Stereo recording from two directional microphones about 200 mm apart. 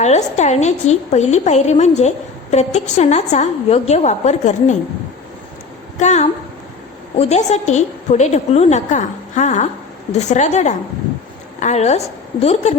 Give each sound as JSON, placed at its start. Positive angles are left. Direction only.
{"t": 0.0, "sound": "a woman's voice", "side_deg": 35}
{"t": 6.0, "sound": "a woman's voice", "side_deg": 35}